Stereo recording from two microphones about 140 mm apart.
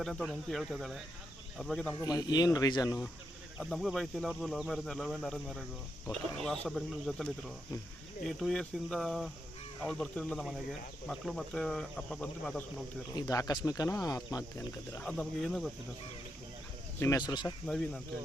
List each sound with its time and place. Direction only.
0.0 s speech: centre (ahead or behind)
2.0 s speech: 30° left (ahead or behind)
3.6 s speech: centre (ahead or behind)
13.1 s speech: 25° left (ahead or behind)
15.0 s speech: centre (ahead or behind)
17.0 s speech: 25° left (ahead or behind)
17.7 s speech: 5° left (ahead or behind)